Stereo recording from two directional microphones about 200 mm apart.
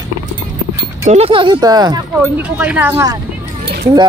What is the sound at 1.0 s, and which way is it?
Speech, 30° right (ahead or behind).